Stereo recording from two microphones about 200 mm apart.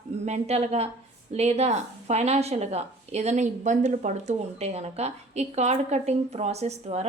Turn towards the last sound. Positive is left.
turn(degrees=-30)  # may be behind; listen again after turning